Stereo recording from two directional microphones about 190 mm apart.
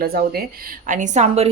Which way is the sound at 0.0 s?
55° right (ahead or behind).